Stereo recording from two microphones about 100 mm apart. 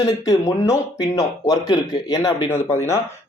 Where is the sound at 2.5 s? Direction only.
25° left (ahead or behind).